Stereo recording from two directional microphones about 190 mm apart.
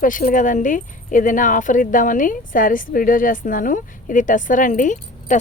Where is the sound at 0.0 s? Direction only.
45° left (ahead or behind).